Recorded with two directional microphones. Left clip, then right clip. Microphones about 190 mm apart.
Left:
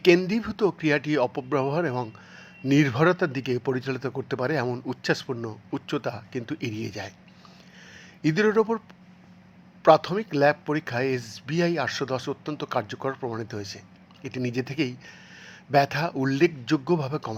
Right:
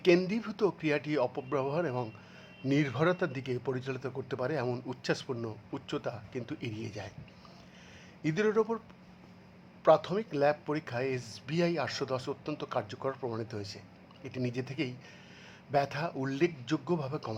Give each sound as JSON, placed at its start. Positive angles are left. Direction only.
{"t": 0.3, "sound": "speech", "side_deg": 10}
{"t": 8.2, "sound": "speech", "side_deg": 15}
{"t": 9.8, "sound": "speech", "side_deg": 15}